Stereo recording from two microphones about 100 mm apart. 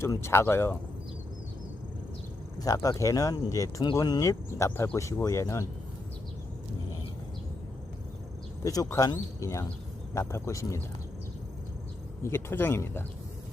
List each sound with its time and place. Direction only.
0.0 s speech: 25° left (ahead or behind)
2.6 s speech: 35° left (ahead or behind)
8.6 s speech: 35° left (ahead or behind)
12.2 s speech: 25° left (ahead or behind)